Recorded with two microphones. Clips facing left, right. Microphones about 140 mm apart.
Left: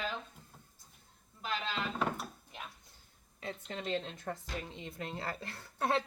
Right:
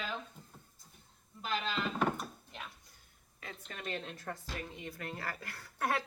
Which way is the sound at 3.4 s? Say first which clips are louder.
Left 5 dB; 25° left (ahead or behind).